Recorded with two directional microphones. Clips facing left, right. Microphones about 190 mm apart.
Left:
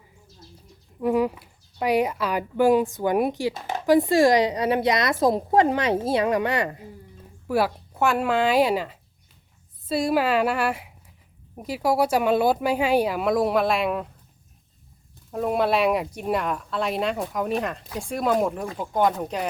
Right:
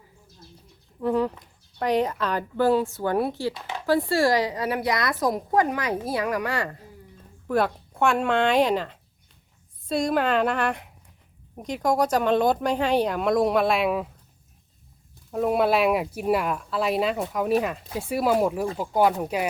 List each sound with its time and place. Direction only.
0.9 s a woman's voice: 10° left (ahead or behind)
7.4 s speech: 5° left (ahead or behind)
15.3 s speech: centre (ahead or behind)